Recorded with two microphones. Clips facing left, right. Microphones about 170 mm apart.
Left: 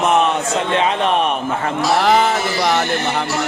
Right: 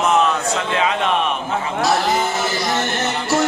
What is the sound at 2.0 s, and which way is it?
Music, 75° left (ahead or behind).